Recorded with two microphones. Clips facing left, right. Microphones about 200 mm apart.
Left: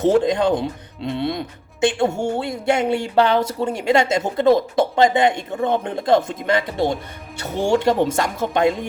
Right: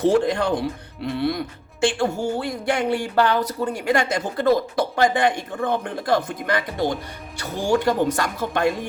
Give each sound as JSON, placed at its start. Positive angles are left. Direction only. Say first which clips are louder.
{"t": 0.0, "sound": "speech", "louder": "left 2 dB", "side_deg": 20}